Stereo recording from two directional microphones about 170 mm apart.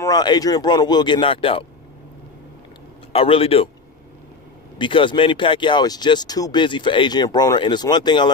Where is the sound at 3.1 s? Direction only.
35° left (ahead or behind).